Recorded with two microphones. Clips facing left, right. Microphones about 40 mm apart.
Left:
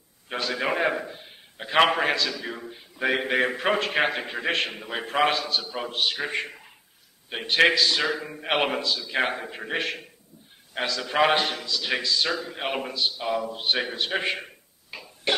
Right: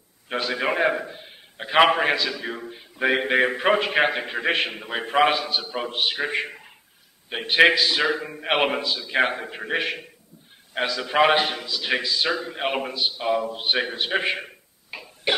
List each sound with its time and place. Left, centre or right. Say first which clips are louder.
0.3 s a man's voice: right 2 dB; centre